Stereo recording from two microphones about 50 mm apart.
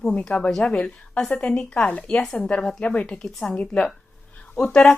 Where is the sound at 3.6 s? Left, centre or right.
Left.